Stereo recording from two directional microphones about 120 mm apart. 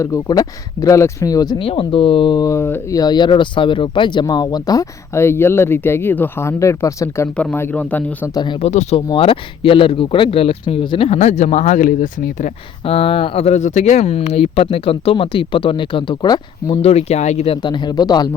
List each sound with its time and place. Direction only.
0.0 s speech: 30° left (ahead or behind)
1.5 s speech: 45° left (ahead or behind); by 2.8 s 20° left (ahead or behind)
2.9 s speech: 35° left (ahead or behind)
7.3 s a man's voice: 15° left (ahead or behind)
8.6 s speech: 70° left (ahead or behind)
9.1 s speech: 50° left (ahead or behind); by 11.9 s 85° left
12.8 s speech: 50° left (ahead or behind)
16.8 s speech: 60° left (ahead or behind)
17.6 s speech: 40° left (ahead or behind)